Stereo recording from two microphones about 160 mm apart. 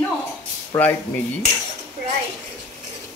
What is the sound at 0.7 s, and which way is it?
Speech, 20° left (ahead or behind).